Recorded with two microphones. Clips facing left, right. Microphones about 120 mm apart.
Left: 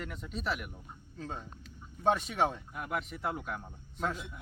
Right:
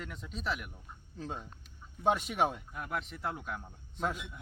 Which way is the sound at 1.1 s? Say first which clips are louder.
Even; 15° right (ahead or behind).